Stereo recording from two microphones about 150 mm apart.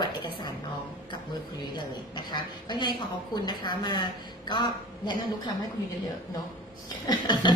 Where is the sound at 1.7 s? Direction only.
30° left (ahead or behind).